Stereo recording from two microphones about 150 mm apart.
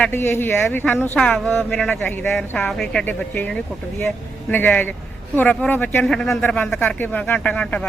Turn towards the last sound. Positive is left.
turn(degrees=10)  # may be behind; listen again after turning